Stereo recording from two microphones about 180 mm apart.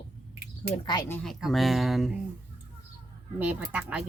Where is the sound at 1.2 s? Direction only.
Centre (ahead or behind).